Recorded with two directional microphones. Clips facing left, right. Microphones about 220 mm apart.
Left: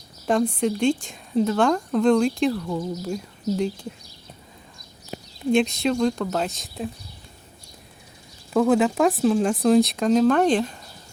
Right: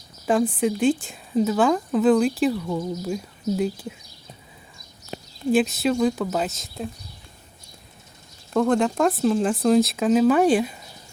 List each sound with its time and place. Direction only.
0.3 s speech: 5° right (ahead or behind)
5.5 s speech: 5° right (ahead or behind)
8.5 s speech: 5° left (ahead or behind)